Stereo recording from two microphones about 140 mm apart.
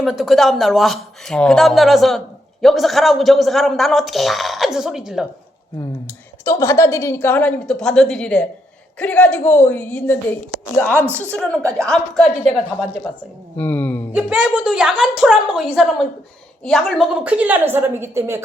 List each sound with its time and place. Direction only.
0.0 s speech: centre (ahead or behind)
6.4 s a woman's voice: 25° left (ahead or behind); by 12.3 s centre (ahead or behind)
13.6 s a woman's voice: 10° left (ahead or behind)
14.1 s a woman's voice: 5° right (ahead or behind)